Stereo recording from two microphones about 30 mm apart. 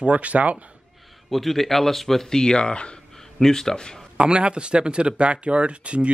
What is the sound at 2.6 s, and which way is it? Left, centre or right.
Speech, left.